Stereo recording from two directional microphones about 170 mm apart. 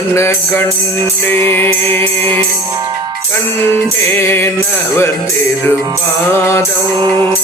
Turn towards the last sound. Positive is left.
turn(degrees=15)  # may be behind; listen again after turning